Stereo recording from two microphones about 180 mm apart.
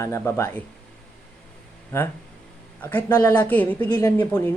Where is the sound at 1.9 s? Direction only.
10° left (ahead or behind).